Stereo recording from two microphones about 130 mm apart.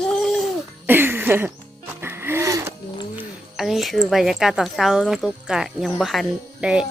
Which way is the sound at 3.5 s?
Centre (ahead or behind).